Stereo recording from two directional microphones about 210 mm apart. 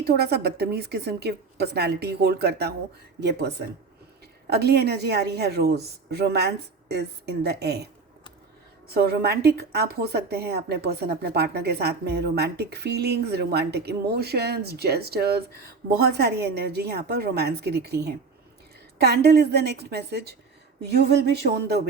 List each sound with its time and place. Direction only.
0.0 s a woman's voice: 50° right (ahead or behind)
4.4 s a woman's voice: 50° right (ahead or behind)
8.9 s a woman's voice: 50° right (ahead or behind)